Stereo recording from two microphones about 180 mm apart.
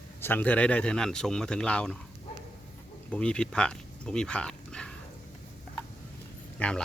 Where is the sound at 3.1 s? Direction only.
5° left (ahead or behind).